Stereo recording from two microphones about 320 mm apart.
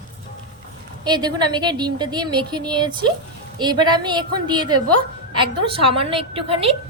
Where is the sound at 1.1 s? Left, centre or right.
Centre.